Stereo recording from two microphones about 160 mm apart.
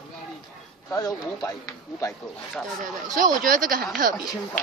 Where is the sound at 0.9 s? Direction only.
20° left (ahead or behind).